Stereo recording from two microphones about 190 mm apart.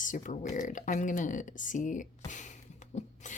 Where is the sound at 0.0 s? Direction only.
45° left (ahead or behind).